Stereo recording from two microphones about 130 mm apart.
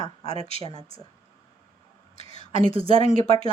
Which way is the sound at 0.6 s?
45° right (ahead or behind).